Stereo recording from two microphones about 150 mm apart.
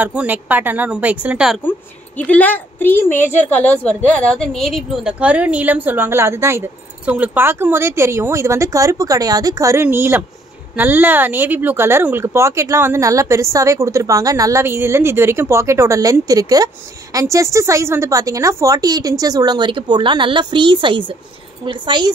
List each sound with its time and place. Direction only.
0.0 s a woman's voice: 10° right (ahead or behind)
1.6 s a woman's voice: 10° left (ahead or behind); by 22.1 s 30° right (ahead or behind)